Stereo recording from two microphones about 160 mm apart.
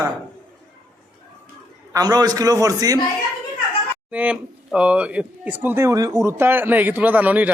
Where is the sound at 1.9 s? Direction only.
25° right (ahead or behind).